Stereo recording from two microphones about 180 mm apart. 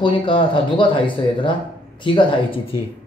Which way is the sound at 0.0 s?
30° left (ahead or behind).